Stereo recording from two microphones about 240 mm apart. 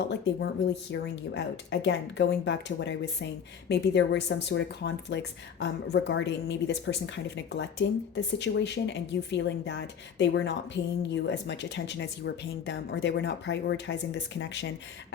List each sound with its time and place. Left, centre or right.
0.0 s speech: left